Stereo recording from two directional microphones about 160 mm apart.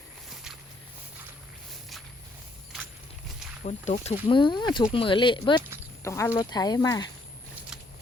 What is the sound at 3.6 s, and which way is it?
Speech, 50° left (ahead or behind).